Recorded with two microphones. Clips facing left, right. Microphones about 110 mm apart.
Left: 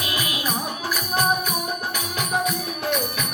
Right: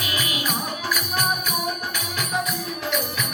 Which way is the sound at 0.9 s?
35° left (ahead or behind).